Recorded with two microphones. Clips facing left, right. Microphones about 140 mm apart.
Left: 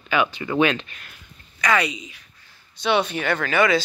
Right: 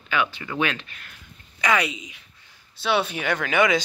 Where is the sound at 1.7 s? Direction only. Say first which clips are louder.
Left 2 dB; 10° right (ahead or behind).